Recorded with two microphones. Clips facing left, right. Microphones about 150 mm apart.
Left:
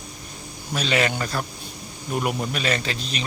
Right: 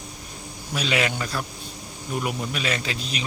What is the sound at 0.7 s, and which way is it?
Speech, 5° right (ahead or behind).